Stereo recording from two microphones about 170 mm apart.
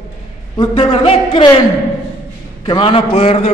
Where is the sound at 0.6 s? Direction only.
30° left (ahead or behind).